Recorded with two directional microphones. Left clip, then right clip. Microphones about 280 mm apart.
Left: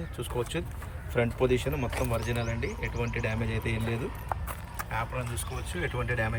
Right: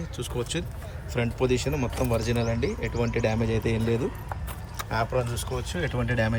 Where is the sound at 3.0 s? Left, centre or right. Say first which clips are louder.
Right 7 dB; centre.